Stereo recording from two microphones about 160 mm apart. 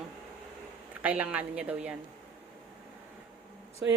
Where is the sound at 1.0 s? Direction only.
10° right (ahead or behind).